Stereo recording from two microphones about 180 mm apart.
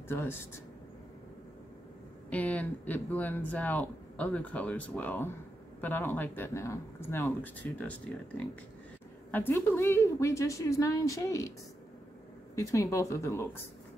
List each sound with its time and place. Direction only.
0.1 s speech: 15° left (ahead or behind)
2.2 s a woman's voice: 5° left (ahead or behind)
12.5 s speech: 20° left (ahead or behind)